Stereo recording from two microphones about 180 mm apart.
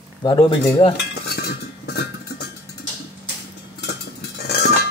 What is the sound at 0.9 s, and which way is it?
Cutlery, 65° left (ahead or behind).